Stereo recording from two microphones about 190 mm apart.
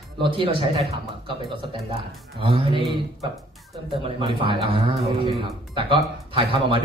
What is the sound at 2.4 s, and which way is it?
Speech, 25° right (ahead or behind).